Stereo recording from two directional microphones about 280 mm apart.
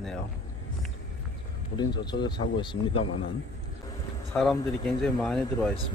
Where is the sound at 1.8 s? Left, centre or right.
Centre.